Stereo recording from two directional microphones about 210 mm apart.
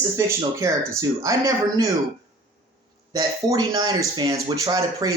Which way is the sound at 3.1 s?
20° right (ahead or behind).